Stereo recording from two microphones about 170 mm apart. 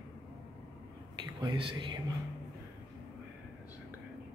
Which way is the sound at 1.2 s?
25° right (ahead or behind).